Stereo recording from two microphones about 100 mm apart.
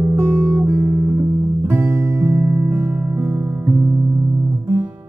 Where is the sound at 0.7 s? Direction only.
35° right (ahead or behind).